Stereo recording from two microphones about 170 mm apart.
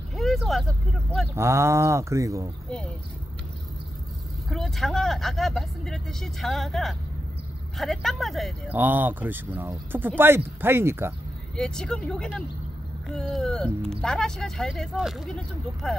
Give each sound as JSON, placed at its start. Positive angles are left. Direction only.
{"t": 0.1, "sound": "vehicle", "side_deg": 0}
{"t": 1.3, "sound": "speech", "side_deg": -15}
{"t": 4.5, "sound": "speech", "side_deg": 0}
{"t": 8.7, "sound": "speech", "side_deg": -10}
{"t": 11.5, "sound": "speech", "side_deg": 5}
{"t": 13.3, "sound": "speech", "side_deg": 5}